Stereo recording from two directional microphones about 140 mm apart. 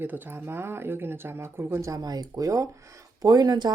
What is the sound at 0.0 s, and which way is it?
Speech, 15° right (ahead or behind).